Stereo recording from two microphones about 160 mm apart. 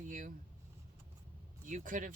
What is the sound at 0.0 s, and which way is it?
Speech, 55° right (ahead or behind).